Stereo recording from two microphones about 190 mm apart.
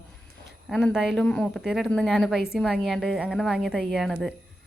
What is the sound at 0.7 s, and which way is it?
A woman's voice, 10° left (ahead or behind).